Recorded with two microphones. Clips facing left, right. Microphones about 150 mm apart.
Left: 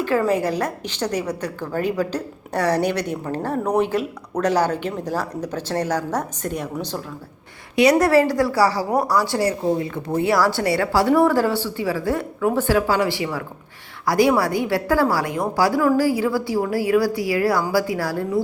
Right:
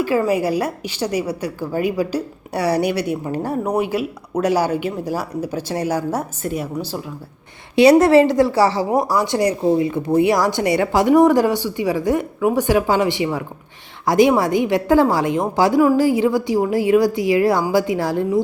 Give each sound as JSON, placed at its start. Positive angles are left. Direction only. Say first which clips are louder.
{"t": 0.3, "sound": "a woman's voice", "louder": "right 2 dB", "side_deg": -10}
{"t": 7.8, "sound": "a woman's voice", "louder": "right 4 dB", "side_deg": -25}